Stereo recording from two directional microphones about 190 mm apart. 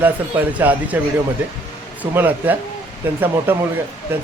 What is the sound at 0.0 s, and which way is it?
Speech, 10° right (ahead or behind).